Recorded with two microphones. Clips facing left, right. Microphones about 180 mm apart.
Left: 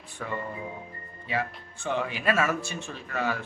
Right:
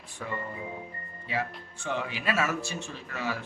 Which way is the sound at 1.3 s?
55° left (ahead or behind).